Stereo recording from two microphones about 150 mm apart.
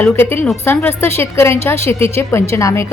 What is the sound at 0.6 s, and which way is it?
A woman's voice, 15° left (ahead or behind).